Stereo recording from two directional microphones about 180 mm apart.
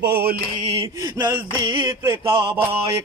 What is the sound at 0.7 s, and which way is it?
Mantra, 25° right (ahead or behind).